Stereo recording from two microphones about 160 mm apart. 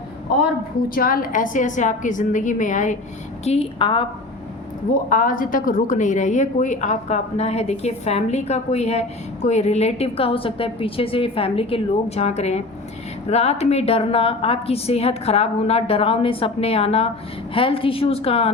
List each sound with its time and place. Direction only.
0.9 s a woman's voice: 65° left (ahead or behind)
3.4 s a woman's voice: 40° left (ahead or behind)
5.0 s a woman's voice: 60° left (ahead or behind); by 18.5 s 35° left (ahead or behind)